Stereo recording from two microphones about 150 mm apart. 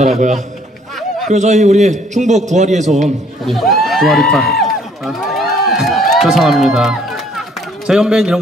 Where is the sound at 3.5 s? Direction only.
Centre (ahead or behind).